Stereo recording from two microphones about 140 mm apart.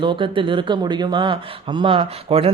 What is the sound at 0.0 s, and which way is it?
Speech, 35° right (ahead or behind).